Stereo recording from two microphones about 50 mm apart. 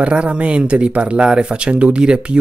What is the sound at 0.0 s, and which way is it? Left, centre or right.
Speech, right.